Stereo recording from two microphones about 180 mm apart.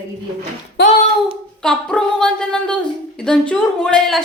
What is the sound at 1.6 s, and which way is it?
A woman's voice, 5° left (ahead or behind).